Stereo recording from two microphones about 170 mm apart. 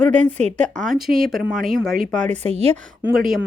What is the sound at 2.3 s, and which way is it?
Speech, 40° right (ahead or behind).